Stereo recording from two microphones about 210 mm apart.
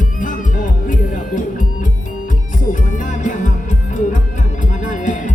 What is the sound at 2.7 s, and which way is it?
Music, 40° left (ahead or behind).